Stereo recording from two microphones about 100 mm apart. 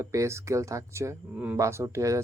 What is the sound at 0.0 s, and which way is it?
Speech, 30° right (ahead or behind).